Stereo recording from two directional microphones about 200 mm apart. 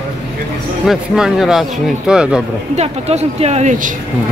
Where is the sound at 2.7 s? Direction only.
30° right (ahead or behind).